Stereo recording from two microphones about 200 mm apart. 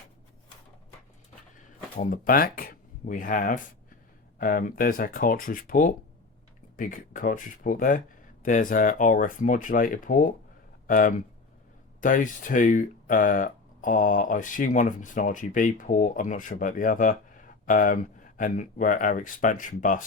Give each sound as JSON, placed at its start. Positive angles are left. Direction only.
{"t": 2.0, "sound": "speech", "side_deg": 45}